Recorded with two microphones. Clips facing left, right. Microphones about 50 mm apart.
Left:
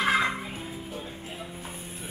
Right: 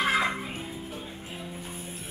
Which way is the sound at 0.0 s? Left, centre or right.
Centre.